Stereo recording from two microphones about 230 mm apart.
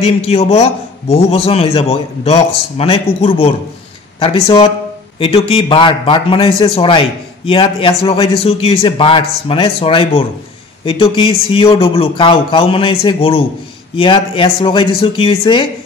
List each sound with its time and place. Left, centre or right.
0.0 s a man's voice: left